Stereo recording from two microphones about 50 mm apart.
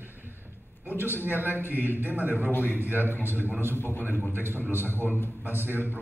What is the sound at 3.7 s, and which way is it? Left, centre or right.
Speech, left.